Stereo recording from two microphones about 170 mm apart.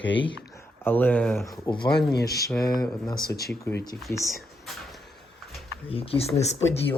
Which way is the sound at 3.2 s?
65° left (ahead or behind).